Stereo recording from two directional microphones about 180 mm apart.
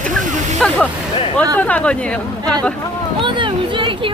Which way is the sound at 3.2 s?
25° right (ahead or behind).